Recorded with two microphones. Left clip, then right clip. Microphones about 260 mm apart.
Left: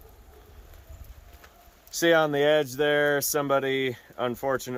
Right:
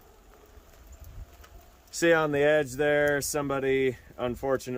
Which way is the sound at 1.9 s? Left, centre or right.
Centre.